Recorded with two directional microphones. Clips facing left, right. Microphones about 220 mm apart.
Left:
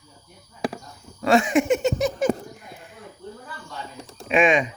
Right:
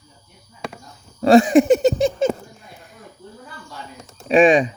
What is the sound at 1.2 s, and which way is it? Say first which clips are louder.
Speech: right 7 dB; 35° right (ahead or behind).